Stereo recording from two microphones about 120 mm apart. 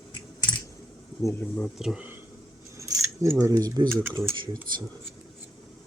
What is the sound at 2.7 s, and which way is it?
Keys jangling, 25° right (ahead or behind).